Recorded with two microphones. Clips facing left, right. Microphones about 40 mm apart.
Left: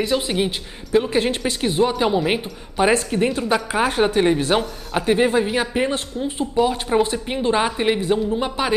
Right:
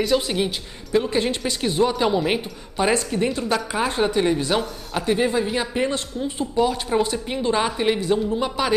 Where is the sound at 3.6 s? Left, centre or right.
Left.